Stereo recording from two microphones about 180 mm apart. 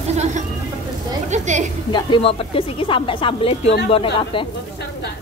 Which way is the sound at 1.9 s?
30° left (ahead or behind).